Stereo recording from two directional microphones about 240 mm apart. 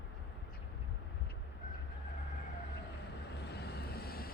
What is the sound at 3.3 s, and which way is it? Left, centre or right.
Vehicle, left.